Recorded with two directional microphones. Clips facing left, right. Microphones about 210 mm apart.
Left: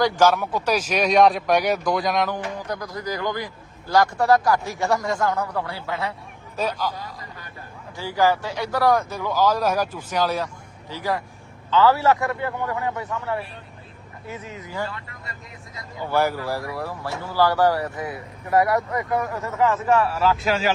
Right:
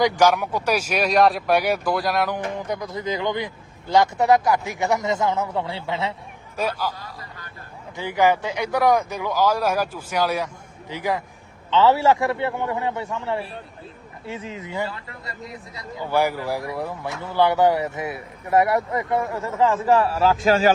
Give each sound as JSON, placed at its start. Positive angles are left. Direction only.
{"t": 0.0, "sound": "speech", "side_deg": -15}
{"t": 2.3, "sound": "speech", "side_deg": -20}
{"t": 6.6, "sound": "speech", "side_deg": -10}
{"t": 7.9, "sound": "speech", "side_deg": -20}
{"t": 16.0, "sound": "speech", "side_deg": -15}